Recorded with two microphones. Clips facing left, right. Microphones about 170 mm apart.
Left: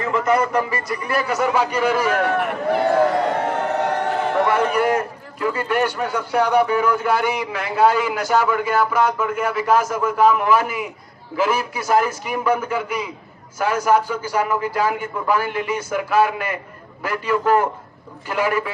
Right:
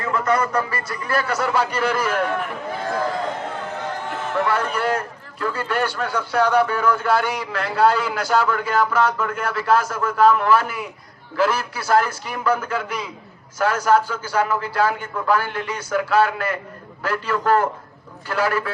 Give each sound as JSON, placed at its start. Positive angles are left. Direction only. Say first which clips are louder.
{"t": 0.1, "sound": "a man's voice", "louder": "left 2 dB", "side_deg": 15}
{"t": 2.4, "sound": "a sound", "louder": "left 8 dB", "side_deg": 70}
{"t": 4.4, "sound": "a man's voice", "louder": "left 2 dB", "side_deg": 15}